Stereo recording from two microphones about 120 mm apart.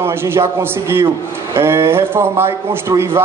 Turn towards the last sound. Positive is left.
turn(degrees=-20)  # may be behind; listen again after turning